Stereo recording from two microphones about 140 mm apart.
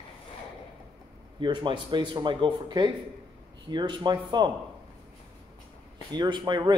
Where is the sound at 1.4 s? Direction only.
35° right (ahead or behind).